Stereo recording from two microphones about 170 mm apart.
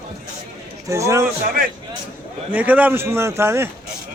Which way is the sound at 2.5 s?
10° right (ahead or behind).